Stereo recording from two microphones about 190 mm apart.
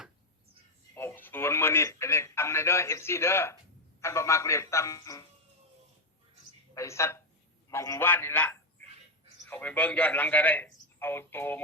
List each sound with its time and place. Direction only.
0.9 s a man's voice: 10° left (ahead or behind)
6.7 s a man's voice: 15° left (ahead or behind)